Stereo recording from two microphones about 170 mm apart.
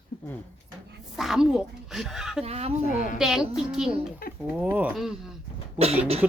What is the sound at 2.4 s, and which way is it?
Speech, 35° right (ahead or behind).